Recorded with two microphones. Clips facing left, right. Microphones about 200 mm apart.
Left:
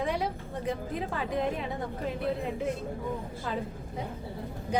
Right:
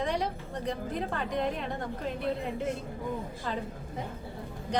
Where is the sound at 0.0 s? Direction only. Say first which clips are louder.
Even; 5° left (ahead or behind).